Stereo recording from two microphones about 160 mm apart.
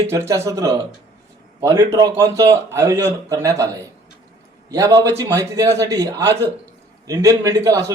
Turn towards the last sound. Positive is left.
turn(degrees=-20)  # may be behind; listen again after turning